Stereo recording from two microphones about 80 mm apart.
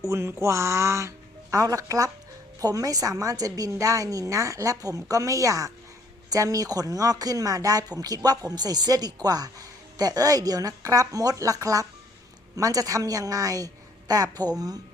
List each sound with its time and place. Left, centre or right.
0.1 s speech: right